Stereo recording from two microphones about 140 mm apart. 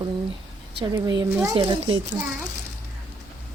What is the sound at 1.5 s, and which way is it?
Speech, 35° right (ahead or behind).